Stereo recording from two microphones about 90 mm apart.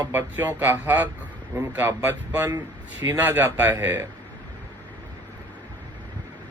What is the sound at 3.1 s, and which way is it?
Speech, 20° right (ahead or behind).